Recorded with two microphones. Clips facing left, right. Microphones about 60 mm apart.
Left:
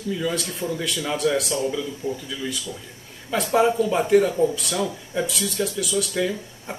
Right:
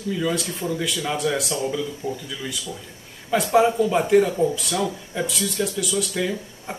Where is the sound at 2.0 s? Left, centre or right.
Left.